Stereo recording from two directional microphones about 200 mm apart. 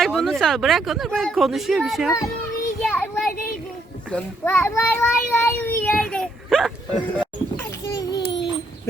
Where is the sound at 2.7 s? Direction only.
10° left (ahead or behind).